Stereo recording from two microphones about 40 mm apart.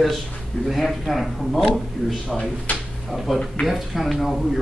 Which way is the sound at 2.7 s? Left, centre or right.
Left.